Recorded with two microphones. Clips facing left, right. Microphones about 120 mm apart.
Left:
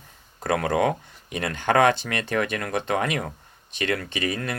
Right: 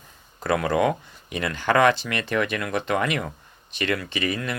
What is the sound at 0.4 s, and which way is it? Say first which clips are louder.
Speech: right 1 dB; 55° left (ahead or behind).